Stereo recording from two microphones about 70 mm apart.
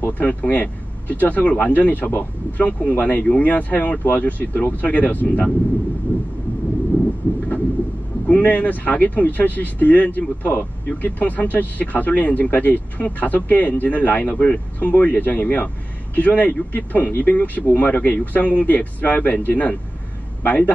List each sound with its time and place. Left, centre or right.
0.2 s speech: left
6.9 s vehicle: left
8.3 s speech: left